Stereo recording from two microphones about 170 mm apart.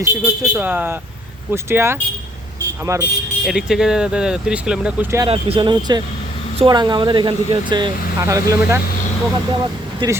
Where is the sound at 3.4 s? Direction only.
5° right (ahead or behind).